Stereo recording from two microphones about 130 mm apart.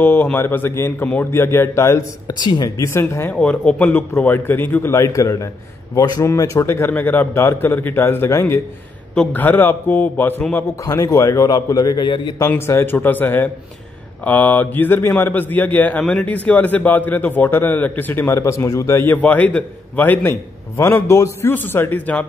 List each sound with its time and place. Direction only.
0.0 s a man's voice: 15° left (ahead or behind)
3.3 s a man's voice: 10° left (ahead or behind)
9.1 s a man's voice: 10° left (ahead or behind); by 12.4 s 35° left (ahead or behind)
12.4 s a man's voice: 20° left (ahead or behind)